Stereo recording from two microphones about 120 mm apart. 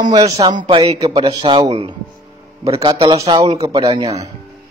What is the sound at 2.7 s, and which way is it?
Speech, 55° right (ahead or behind).